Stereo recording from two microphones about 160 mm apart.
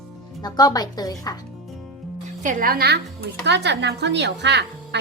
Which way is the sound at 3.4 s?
90° right.